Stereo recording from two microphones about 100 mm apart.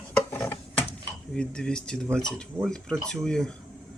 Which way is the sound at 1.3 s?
10° left (ahead or behind).